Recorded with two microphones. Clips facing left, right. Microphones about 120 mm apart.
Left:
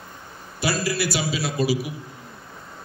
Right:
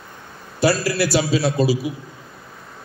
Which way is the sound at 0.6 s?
35° right (ahead or behind).